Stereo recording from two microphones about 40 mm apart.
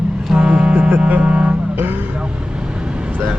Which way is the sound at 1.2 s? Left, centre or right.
Right.